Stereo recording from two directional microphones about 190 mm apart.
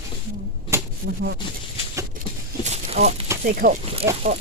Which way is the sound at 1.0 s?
60° right (ahead or behind).